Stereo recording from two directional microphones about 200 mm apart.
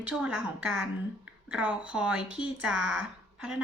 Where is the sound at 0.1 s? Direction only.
5° right (ahead or behind).